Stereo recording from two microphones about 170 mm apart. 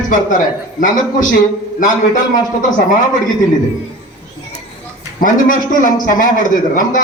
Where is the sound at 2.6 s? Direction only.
50° left (ahead or behind).